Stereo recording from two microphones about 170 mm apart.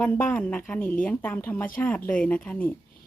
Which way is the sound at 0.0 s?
10° left (ahead or behind).